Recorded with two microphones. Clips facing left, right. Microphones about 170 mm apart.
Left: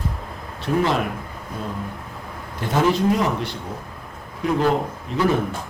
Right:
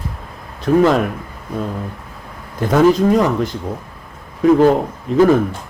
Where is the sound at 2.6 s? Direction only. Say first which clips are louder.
Right 7 dB; 45° right (ahead or behind).